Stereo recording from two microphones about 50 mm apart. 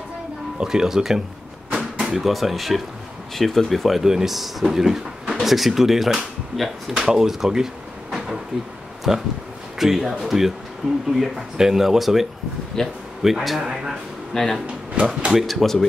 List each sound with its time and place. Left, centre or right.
0.6 s speech: centre
7.1 s drawer open or close: centre
9.1 s speech: centre
14.3 s speech: centre